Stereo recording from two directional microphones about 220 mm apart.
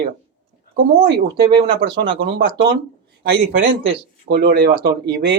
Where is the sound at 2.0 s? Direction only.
50° right (ahead or behind).